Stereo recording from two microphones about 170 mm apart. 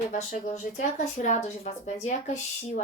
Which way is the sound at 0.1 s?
45° left (ahead or behind).